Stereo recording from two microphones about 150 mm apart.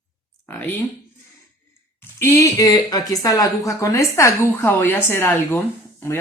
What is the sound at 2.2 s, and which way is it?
Speech, 20° left (ahead or behind).